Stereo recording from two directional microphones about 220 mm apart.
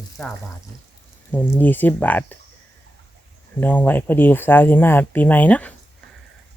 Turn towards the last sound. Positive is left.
turn(degrees=5)  # may be behind; listen again after turning